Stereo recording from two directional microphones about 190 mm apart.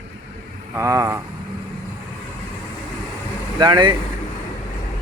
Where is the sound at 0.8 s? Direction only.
15° right (ahead or behind).